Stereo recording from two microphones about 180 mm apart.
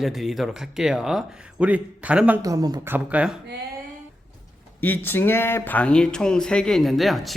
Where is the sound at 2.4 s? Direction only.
20° right (ahead or behind).